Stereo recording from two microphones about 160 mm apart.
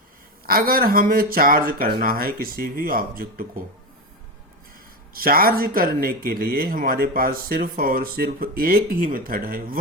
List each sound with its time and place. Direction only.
0.4 s speech: 65° right (ahead or behind)
5.1 s speech: 65° right (ahead or behind)